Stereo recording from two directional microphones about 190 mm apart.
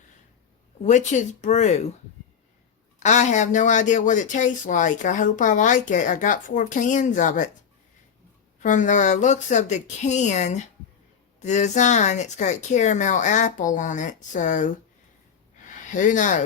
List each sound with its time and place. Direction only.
0.8 s speech: 40° left (ahead or behind)
3.0 s speech: 40° left (ahead or behind)
8.6 s speech: 40° left (ahead or behind)
15.6 s a sound: 45° left (ahead or behind)